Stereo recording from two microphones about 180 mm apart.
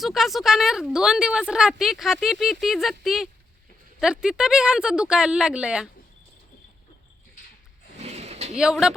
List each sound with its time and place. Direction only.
0.0 s a woman's voice: centre (ahead or behind)
7.9 s a sound: 35° right (ahead or behind)
8.5 s a woman's voice: 5° right (ahead or behind)